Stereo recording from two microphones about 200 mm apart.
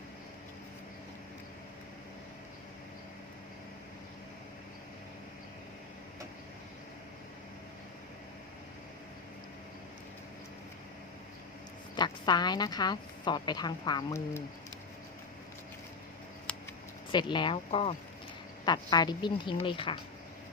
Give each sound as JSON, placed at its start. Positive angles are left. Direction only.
{"t": 11.9, "sound": "a woman's voice", "side_deg": 20}
{"t": 16.5, "sound": "a sound", "side_deg": 5}
{"t": 17.1, "sound": "speech", "side_deg": 25}